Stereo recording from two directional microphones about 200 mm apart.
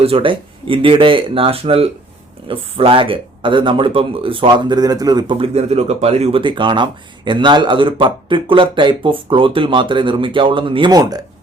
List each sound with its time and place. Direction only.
0.0 s speech: 30° right (ahead or behind)